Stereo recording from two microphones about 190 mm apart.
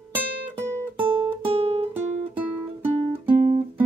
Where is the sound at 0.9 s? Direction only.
25° right (ahead or behind).